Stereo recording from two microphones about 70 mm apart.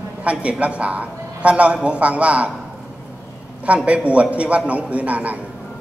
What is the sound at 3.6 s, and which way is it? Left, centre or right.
A man's voice, centre.